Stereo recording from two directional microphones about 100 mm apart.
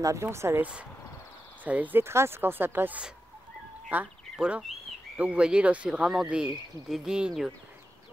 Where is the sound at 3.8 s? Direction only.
20° right (ahead or behind).